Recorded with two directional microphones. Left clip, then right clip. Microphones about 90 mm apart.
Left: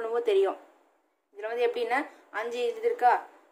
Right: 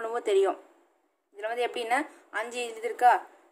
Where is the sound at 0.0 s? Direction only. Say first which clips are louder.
Even; 45° right (ahead or behind).